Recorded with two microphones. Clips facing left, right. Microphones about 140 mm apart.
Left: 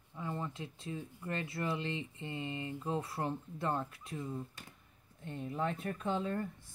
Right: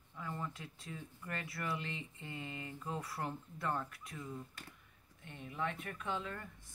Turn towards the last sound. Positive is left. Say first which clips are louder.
# left 6 dB
turn(degrees=35)  # may be behind; listen again after turning